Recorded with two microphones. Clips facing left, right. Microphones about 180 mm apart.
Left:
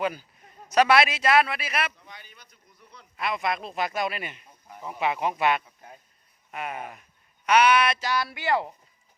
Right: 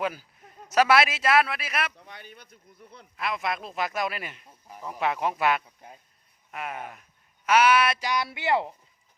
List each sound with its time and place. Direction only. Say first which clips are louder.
0.0 s speech: left 1 dB; 5° right (ahead or behind)
2.0 s a sound: right 3 dB; 60° right (ahead or behind)
3.2 s speech: left 2 dB; centre (ahead or behind); by 8.7 s 20° right (ahead or behind)